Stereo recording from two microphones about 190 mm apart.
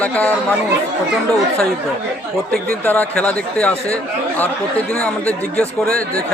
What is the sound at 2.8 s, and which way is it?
Speech, 5° left (ahead or behind).